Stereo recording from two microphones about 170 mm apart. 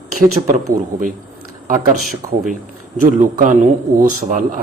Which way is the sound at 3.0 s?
50° right (ahead or behind).